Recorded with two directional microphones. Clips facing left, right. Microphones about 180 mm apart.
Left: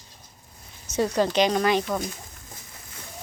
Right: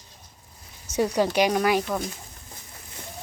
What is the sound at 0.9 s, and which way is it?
Speech, 10° right (ahead or behind).